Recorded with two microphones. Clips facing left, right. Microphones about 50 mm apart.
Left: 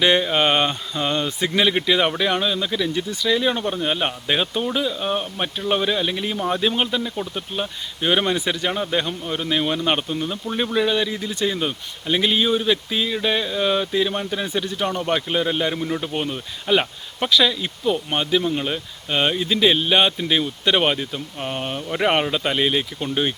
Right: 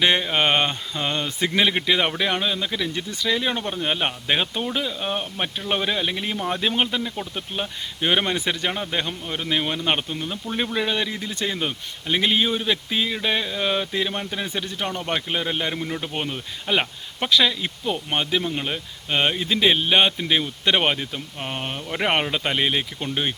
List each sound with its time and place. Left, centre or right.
0.0 s speech: centre
6.3 s speech: centre
6.6 s speech: centre
10.8 s speech: centre
14.8 s speech: centre